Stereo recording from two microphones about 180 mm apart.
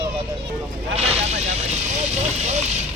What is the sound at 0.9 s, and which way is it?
Vehicle, 35° right (ahead or behind).